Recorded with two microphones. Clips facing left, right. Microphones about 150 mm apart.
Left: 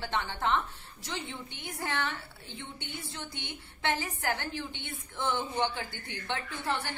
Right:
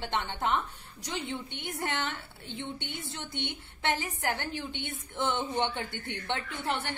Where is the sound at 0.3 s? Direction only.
20° right (ahead or behind).